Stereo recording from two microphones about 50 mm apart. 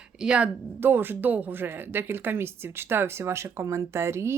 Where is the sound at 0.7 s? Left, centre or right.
Right.